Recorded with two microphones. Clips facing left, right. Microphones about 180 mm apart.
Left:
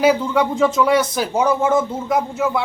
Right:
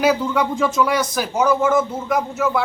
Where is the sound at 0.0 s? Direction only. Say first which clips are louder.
Left 2 dB; 25° left (ahead or behind).